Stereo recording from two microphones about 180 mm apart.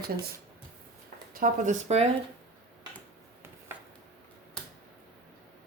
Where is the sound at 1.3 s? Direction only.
50° right (ahead or behind).